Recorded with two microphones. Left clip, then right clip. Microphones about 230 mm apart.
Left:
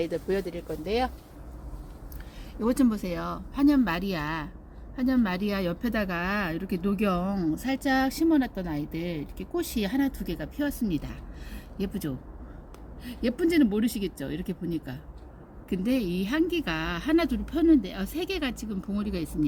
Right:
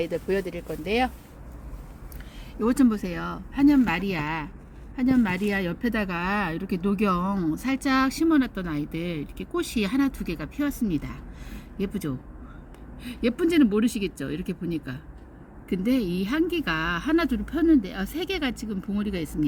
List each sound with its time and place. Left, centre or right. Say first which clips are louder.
0.0 s speech: right 2 dB; centre
2.6 s speech: right 3 dB; centre
10.8 s speech: right 2 dB; centre
13.0 s speech: right 2 dB; centre